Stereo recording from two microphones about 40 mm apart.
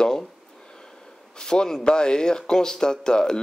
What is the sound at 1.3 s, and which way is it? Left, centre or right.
A man's voice, centre.